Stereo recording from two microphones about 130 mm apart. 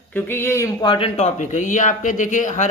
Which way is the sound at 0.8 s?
40° left (ahead or behind).